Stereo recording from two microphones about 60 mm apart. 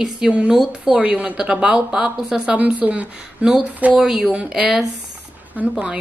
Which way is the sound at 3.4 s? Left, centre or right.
Centre.